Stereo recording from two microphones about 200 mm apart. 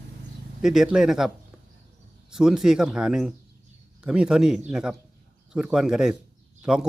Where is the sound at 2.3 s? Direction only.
Centre (ahead or behind).